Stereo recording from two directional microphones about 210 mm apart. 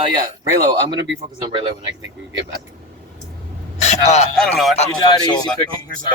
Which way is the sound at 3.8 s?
30° left (ahead or behind).